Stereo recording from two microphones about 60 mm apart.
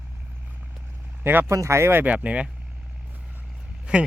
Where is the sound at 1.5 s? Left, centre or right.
Right.